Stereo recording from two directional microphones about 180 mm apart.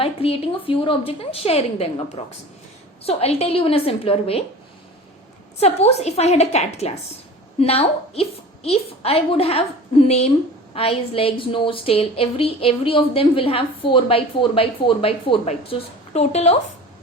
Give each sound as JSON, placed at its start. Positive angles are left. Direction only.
{"t": 0.0, "sound": "a woman's voice", "side_deg": 35}
{"t": 5.5, "sound": "a woman's voice", "side_deg": 35}